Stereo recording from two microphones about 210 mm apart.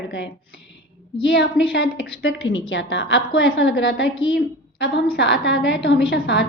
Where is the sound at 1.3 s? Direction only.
55° left (ahead or behind).